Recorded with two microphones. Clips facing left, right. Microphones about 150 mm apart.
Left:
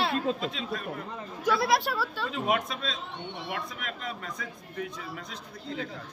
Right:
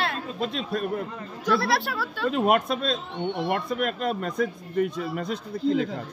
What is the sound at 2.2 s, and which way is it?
Speech, 60° right (ahead or behind).